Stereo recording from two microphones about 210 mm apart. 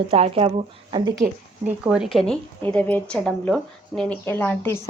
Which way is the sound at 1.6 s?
5° right (ahead or behind).